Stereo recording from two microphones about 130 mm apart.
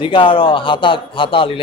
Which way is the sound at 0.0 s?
40° left (ahead or behind).